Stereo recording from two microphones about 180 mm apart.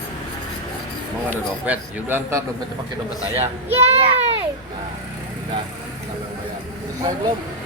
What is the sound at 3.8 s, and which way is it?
Speech, 35° right (ahead or behind).